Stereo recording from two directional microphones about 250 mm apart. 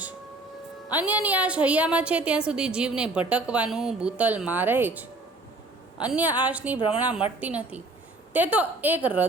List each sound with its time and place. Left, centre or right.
0.9 s a woman's voice: centre
6.7 s a woman's voice: left
7.0 s a woman's voice: centre